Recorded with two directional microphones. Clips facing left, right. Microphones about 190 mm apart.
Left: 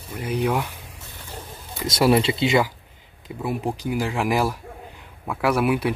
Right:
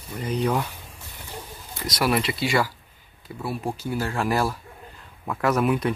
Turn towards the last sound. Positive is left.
turn(degrees=10)  # may be behind; listen again after turning